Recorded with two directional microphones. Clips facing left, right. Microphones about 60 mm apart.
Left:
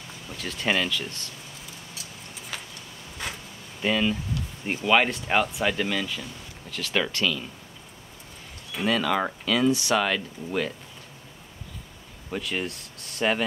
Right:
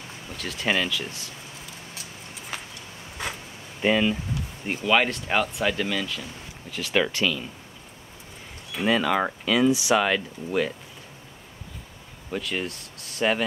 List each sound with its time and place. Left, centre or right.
0.4 s speech: centre
2.5 s a sound: centre
3.8 s speech: centre
4.6 s speech: centre
6.7 s speech: centre
8.7 s speech: centre
12.3 s speech: centre